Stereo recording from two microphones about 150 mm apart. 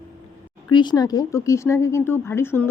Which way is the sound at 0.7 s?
30° left (ahead or behind).